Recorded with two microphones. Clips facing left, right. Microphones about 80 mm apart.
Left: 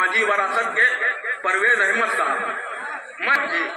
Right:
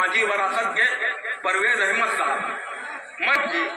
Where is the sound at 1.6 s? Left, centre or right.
Left.